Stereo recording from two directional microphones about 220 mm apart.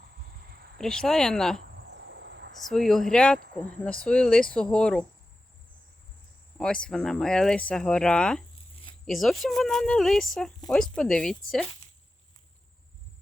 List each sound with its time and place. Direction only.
0.8 s speech: centre (ahead or behind)
1.7 s cricket: 50° right (ahead or behind)
2.6 s speech: centre (ahead or behind)
6.6 s speech: 5° left (ahead or behind)